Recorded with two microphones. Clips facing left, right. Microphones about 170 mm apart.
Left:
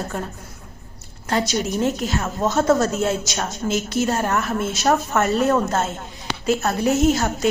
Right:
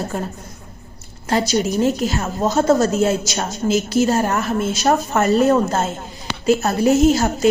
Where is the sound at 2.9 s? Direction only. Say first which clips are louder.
Right 4 dB; centre (ahead or behind).